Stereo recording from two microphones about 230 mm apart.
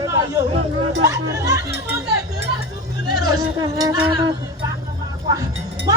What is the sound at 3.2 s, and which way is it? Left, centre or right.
Speech, centre.